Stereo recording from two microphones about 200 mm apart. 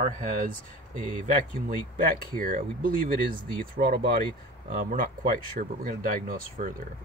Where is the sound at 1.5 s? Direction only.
45° right (ahead or behind).